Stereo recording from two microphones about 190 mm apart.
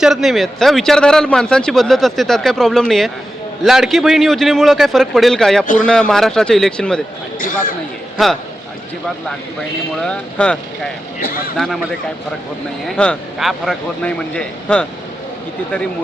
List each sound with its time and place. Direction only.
0.0 s a man's voice: centre (ahead or behind)
7.3 s speech: 45° left (ahead or behind)
8.2 s a man's voice: centre (ahead or behind)
10.0 s a man's voice: 5° left (ahead or behind)
11.2 s speech: 50° left (ahead or behind)
11.5 s a man's voice: centre (ahead or behind)